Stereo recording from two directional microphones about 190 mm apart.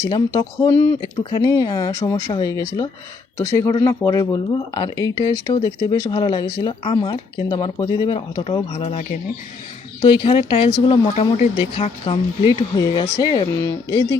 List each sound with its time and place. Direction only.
0.0 s speech: 20° left (ahead or behind)